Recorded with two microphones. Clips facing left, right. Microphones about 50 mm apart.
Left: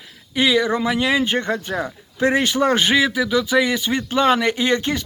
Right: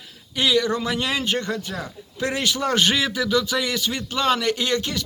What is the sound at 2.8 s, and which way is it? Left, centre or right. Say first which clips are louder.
Speech: left 4 dB; centre.